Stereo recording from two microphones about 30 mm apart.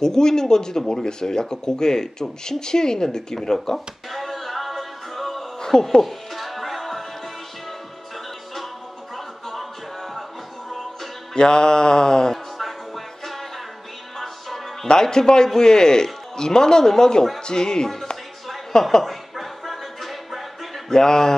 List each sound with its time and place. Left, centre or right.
0.0 s speech: centre
4.1 s music: centre
5.6 s speech: centre
6.0 s music: centre
9.1 s music: centre
11.3 s speech: left
12.5 s music: centre
14.9 s a woman's voice: left
19.0 s a sound: centre
20.9 s speech: left